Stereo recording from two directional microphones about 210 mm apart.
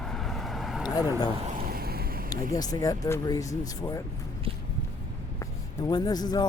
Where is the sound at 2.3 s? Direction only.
15° left (ahead or behind).